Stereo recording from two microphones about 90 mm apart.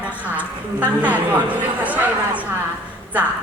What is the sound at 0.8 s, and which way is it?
A woman's voice, 20° right (ahead or behind).